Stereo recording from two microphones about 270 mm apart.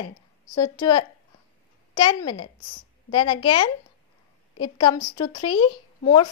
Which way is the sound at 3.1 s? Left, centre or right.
Centre.